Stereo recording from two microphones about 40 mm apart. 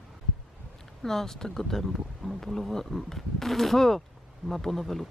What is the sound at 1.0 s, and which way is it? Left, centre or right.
Speech, centre.